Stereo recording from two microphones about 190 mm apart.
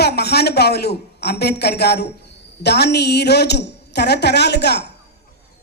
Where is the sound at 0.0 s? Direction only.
60° left (ahead or behind).